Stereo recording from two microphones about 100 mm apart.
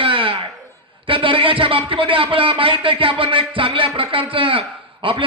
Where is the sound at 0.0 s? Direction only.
60° right (ahead or behind).